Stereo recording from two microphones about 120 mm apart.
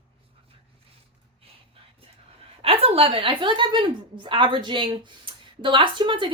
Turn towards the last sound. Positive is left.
turn(degrees=-45)  # may be behind; listen again after turning